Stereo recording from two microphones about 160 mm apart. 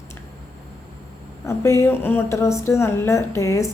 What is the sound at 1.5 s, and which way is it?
A woman's voice, 15° left (ahead or behind).